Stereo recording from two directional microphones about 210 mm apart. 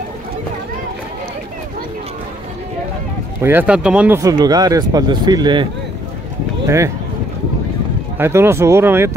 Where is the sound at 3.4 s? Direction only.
10° right (ahead or behind).